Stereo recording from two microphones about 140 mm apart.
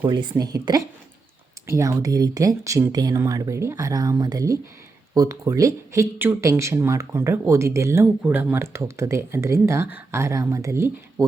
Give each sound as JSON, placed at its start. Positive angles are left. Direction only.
{"t": 0.0, "sound": "a woman's voice", "side_deg": -35}